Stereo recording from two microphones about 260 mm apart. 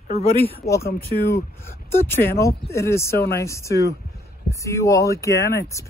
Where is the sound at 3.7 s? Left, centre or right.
Left.